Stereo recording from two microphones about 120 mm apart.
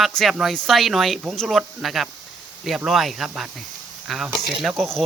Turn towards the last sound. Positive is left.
turn(degrees=5)  # may be behind; listen again after turning